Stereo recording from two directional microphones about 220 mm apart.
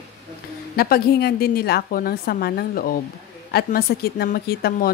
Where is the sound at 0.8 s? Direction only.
45° left (ahead or behind).